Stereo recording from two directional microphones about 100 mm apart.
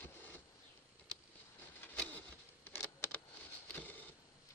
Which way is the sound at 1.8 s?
20° left (ahead or behind).